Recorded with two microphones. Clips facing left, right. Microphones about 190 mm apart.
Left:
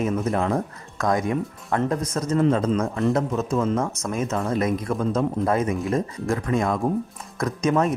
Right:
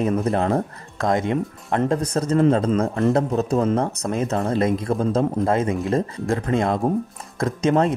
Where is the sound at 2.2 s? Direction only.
60° right (ahead or behind).